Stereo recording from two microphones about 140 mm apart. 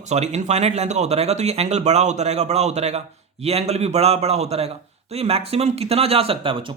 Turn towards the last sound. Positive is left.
turn(degrees=-40)  # may be behind; listen again after turning